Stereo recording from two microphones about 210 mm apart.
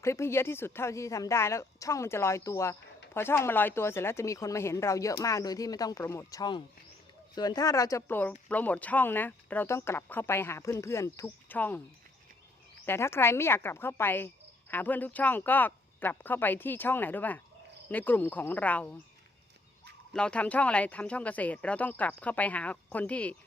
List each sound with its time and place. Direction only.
0.0 s speech: 15° left (ahead or behind)
12.8 s speech: 10° left (ahead or behind)
20.1 s speech: 5° left (ahead or behind)